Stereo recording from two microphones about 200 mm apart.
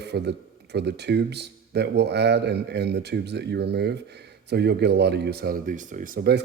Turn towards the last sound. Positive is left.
turn(degrees=-50)  # may be behind; listen again after turning